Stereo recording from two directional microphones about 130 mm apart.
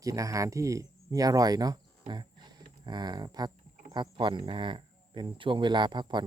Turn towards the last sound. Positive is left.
turn(degrees=-35)  # may be behind; listen again after turning